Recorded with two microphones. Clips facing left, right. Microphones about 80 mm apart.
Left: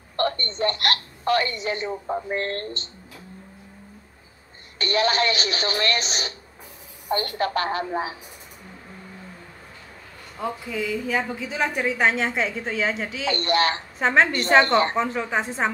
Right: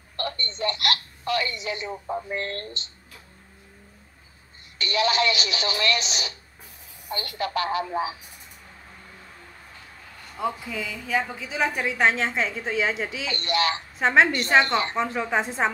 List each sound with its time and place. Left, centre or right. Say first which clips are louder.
0.1 s a woman's voice: left 7 dB; left
4.7 s speech: left 1 dB; left
10.3 s a woman's voice: even; centre
13.3 s speech: left 4 dB; left
13.9 s a woman's voice: right 1 dB; centre